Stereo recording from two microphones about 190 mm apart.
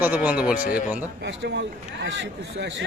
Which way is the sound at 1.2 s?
65° right (ahead or behind).